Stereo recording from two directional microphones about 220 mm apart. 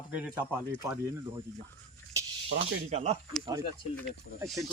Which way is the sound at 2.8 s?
30° right (ahead or behind).